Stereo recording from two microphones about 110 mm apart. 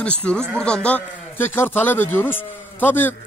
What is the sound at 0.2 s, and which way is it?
A man's voice, 10° left (ahead or behind).